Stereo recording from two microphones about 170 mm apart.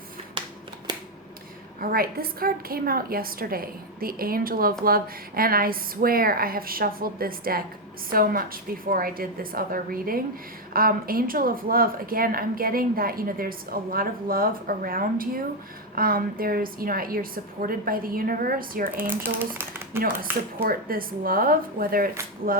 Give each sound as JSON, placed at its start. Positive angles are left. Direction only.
{"t": 0.4, "sound": "a sound", "side_deg": -30}
{"t": 1.8, "sound": "speech", "side_deg": -60}
{"t": 19.1, "sound": "speech", "side_deg": -10}
{"t": 20.6, "sound": "speech", "side_deg": -60}